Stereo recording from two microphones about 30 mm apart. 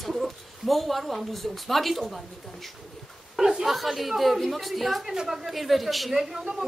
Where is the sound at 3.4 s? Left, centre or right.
Centre.